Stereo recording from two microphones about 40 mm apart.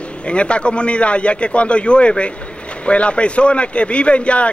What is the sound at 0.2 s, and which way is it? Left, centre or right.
A man's voice, left.